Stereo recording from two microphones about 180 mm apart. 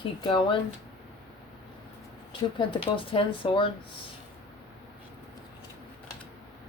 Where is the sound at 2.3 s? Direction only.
30° left (ahead or behind).